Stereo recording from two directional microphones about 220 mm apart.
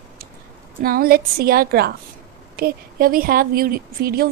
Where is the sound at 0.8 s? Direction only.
40° right (ahead or behind).